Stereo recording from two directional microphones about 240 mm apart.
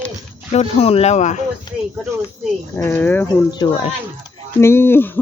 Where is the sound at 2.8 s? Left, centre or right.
Centre.